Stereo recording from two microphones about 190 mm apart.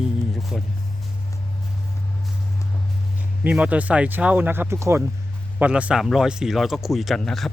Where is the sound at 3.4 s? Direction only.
5° right (ahead or behind).